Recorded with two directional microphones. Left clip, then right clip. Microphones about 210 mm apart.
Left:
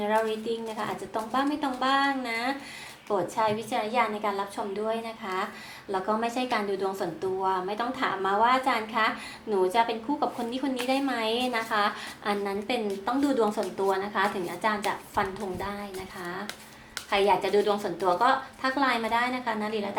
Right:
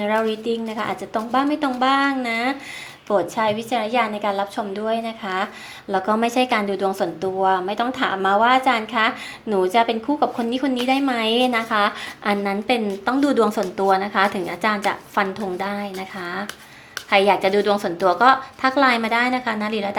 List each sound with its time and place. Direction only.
0.0 s a woman's voice: 45° right (ahead or behind)